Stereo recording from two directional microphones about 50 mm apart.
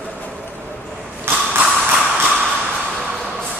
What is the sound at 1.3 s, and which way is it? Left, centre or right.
Mechanisms, right.